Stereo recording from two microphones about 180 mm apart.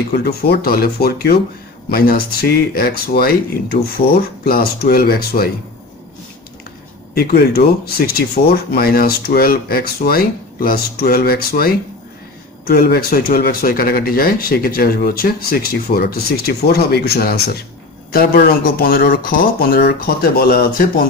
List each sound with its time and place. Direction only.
0.1 s speech: 60° left (ahead or behind)
7.2 s speech: 60° left (ahead or behind)